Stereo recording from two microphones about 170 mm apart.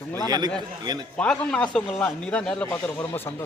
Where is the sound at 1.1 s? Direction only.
5° left (ahead or behind).